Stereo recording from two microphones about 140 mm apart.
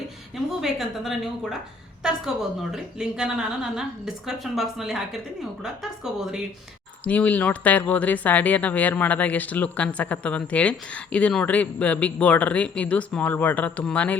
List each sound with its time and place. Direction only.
0.6 s a woman's voice: centre (ahead or behind)
7.0 s speech: 10° left (ahead or behind)